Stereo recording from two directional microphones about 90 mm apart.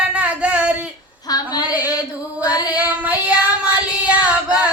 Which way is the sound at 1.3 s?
50° left (ahead or behind).